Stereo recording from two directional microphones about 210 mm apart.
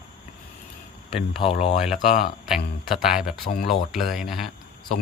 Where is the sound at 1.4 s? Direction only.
30° left (ahead or behind).